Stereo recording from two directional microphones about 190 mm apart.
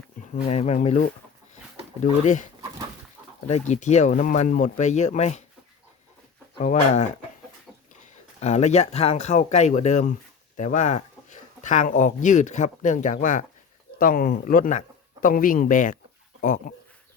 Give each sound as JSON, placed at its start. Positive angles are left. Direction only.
{"t": 0.4, "sound": "speech", "side_deg": 35}
{"t": 3.4, "sound": "speech", "side_deg": 40}
{"t": 6.6, "sound": "speech", "side_deg": 40}
{"t": 8.4, "sound": "speech", "side_deg": 35}